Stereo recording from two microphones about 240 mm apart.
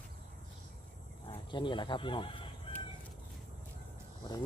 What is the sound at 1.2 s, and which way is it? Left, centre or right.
Speech, centre.